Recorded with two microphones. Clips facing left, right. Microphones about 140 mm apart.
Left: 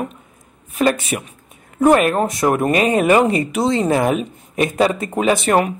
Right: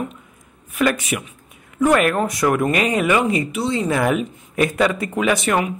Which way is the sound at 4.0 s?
25° left (ahead or behind).